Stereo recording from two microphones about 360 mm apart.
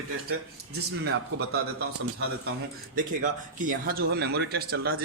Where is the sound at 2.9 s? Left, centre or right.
Right.